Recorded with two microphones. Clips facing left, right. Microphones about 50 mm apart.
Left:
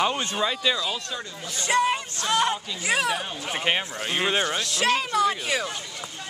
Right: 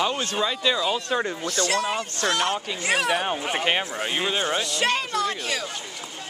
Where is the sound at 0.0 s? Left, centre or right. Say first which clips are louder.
Even; centre.